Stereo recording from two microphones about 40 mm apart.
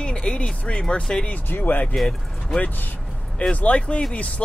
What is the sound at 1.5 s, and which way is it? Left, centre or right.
Speech, left.